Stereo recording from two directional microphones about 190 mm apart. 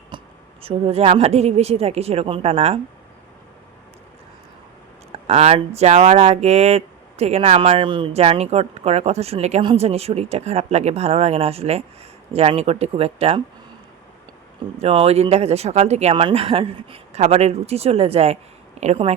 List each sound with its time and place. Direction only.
0.1 s a sound: 25° right (ahead or behind)
0.6 s speech: 30° right (ahead or behind)
5.3 s speech: 35° right (ahead or behind)
14.8 s speech: 30° right (ahead or behind)